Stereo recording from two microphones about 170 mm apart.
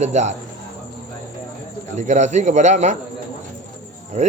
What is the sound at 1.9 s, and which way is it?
Speech, 45° right (ahead or behind).